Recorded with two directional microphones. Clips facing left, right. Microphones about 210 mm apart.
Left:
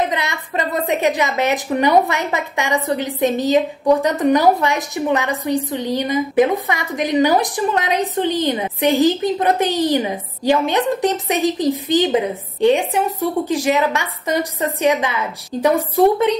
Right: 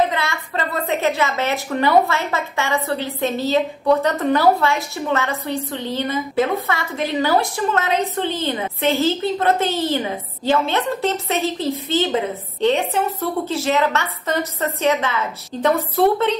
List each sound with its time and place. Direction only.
0.1 s a woman's voice: 20° left (ahead or behind)